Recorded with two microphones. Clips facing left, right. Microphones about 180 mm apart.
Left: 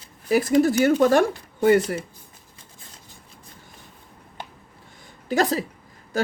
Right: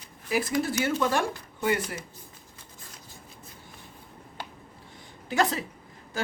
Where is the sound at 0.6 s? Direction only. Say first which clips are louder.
Left 9 dB; 45° left (ahead or behind).